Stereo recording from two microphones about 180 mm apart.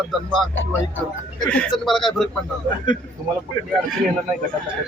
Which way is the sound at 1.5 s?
5° left (ahead or behind).